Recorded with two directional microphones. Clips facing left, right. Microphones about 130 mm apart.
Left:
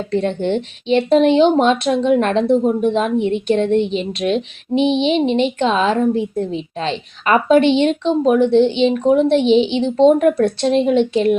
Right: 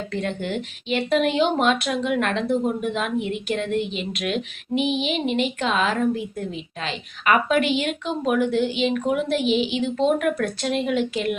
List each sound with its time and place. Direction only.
0.1 s a woman's voice: 30° left (ahead or behind)